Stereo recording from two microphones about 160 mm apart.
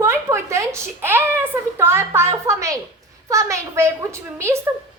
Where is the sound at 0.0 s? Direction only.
15° right (ahead or behind).